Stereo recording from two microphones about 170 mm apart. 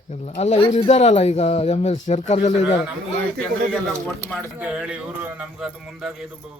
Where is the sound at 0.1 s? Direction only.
40° left (ahead or behind).